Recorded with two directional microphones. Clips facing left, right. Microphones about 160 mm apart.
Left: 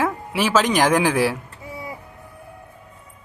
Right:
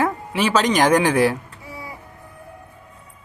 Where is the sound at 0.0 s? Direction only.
Centre (ahead or behind).